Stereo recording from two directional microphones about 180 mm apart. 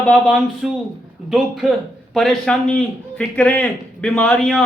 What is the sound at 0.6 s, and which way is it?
Speech, 5° right (ahead or behind).